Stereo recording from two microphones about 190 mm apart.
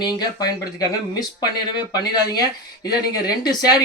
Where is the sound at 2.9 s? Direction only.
20° left (ahead or behind).